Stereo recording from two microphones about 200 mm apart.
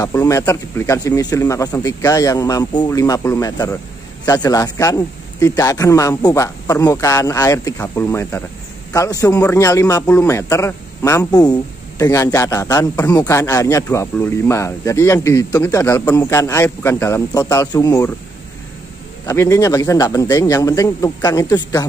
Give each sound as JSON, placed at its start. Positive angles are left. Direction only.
{"t": 0.0, "sound": "a man's voice", "side_deg": 15}
{"t": 19.2, "sound": "a man's voice", "side_deg": 15}